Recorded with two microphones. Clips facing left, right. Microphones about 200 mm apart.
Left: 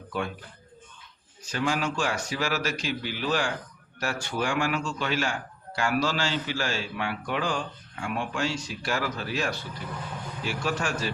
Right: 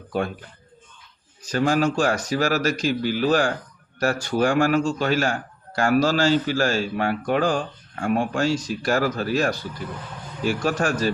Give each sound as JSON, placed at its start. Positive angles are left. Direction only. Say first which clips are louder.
{"t": 1.5, "sound": "a man's voice", "louder": "right 7 dB", "side_deg": -40}